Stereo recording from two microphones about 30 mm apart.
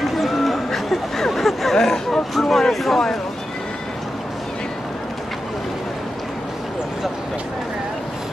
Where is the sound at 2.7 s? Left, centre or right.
Centre.